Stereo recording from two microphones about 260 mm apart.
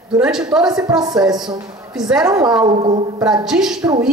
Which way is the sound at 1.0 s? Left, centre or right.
Centre.